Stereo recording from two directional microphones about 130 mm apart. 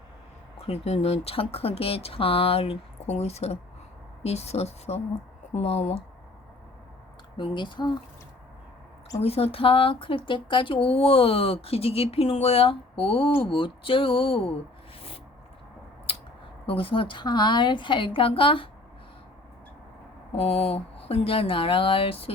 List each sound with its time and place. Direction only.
0.6 s speech: 55° left (ahead or behind)
7.3 s a woman's voice: 35° left (ahead or behind)
9.2 s speech: 50° left (ahead or behind)
16.1 s a sound: 45° left (ahead or behind)
16.6 s a woman's voice: 45° left (ahead or behind)
20.3 s speech: 50° left (ahead or behind)